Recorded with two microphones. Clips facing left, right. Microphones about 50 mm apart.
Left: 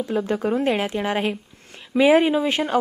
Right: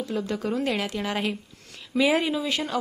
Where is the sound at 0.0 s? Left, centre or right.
Left.